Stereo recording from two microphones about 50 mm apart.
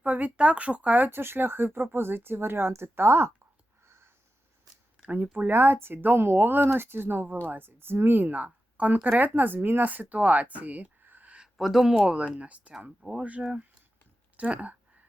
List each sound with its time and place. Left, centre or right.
0.0 s speech: right
5.0 s speech: right
11.5 s speech: centre
12.4 s speech: right